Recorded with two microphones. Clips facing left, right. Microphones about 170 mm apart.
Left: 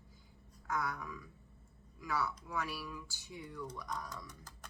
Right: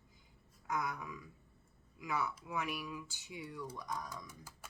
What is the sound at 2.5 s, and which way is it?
Speech, 15° right (ahead or behind).